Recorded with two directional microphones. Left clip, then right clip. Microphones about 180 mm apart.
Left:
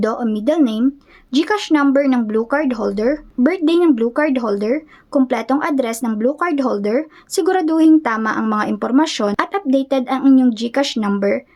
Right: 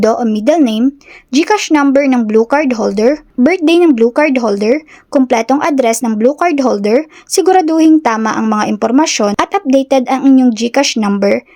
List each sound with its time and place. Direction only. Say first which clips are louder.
0.0 s speech: right 7 dB; 30° right (ahead or behind)